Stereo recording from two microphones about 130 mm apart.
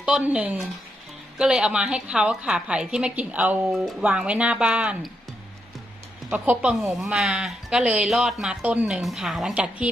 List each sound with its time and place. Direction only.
0.0 s a woman's voice: 10° right (ahead or behind)
6.3 s speech: 10° right (ahead or behind)